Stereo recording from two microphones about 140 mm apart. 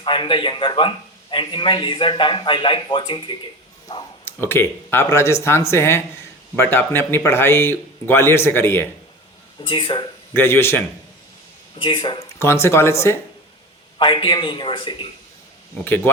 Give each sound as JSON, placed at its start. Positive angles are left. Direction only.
{"t": 0.0, "sound": "a man's voice", "side_deg": 35}
{"t": 3.8, "sound": "a sound", "side_deg": 25}
{"t": 4.4, "sound": "a man's voice", "side_deg": 15}
{"t": 9.6, "sound": "a man's voice", "side_deg": 35}
{"t": 10.3, "sound": "a man's voice", "side_deg": 15}
{"t": 11.8, "sound": "a man's voice", "side_deg": 35}
{"t": 12.4, "sound": "speech", "side_deg": 20}
{"t": 14.0, "sound": "a man's voice", "side_deg": 35}